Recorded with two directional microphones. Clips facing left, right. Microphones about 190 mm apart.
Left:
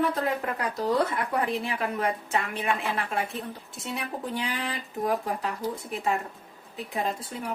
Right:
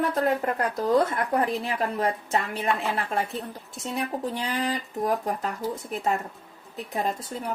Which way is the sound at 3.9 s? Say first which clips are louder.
Right 3 dB; 40° right (ahead or behind).